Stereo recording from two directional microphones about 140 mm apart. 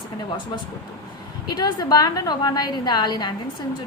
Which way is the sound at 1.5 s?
30° left (ahead or behind).